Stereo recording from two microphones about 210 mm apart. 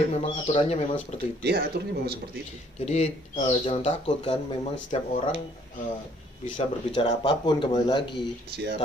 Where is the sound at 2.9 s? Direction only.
30° left (ahead or behind).